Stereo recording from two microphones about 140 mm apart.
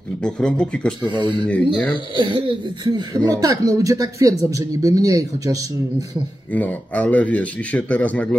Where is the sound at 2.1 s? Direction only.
35° right (ahead or behind).